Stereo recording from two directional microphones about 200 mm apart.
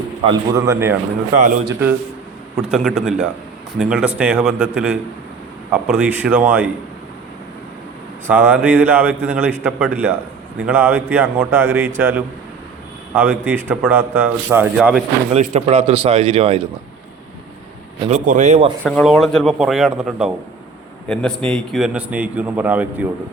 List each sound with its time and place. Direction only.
0.3 s a man's voice: 15° right (ahead or behind)
8.3 s a man's voice: 10° right (ahead or behind)
15.3 s speech: 35° right (ahead or behind)
18.1 s speech: 35° right (ahead or behind)
18.8 s a man's voice: 5° left (ahead or behind)